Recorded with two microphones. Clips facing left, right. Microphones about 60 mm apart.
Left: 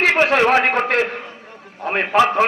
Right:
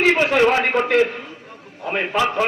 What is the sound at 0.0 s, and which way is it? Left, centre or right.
A man's voice, left.